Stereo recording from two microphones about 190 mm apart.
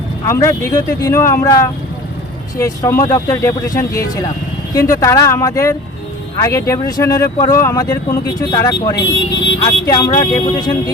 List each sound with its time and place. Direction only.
0.3 s speech: 15° left (ahead or behind)
9.0 s speech: 70° left (ahead or behind)
9.8 s speech: 20° left (ahead or behind)